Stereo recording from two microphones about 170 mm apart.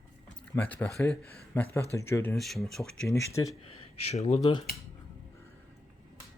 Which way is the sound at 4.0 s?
40° left (ahead or behind).